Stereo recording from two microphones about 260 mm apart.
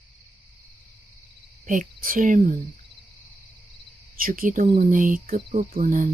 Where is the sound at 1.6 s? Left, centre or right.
Right.